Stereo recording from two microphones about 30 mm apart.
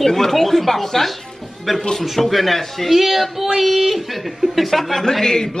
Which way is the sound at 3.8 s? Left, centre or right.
Centre.